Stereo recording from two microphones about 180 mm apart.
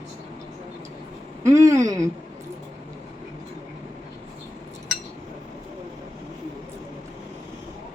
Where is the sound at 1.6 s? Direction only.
20° right (ahead or behind).